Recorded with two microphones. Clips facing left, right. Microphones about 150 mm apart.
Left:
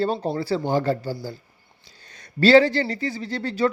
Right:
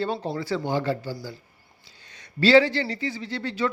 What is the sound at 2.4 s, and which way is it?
Speech, 45° left (ahead or behind).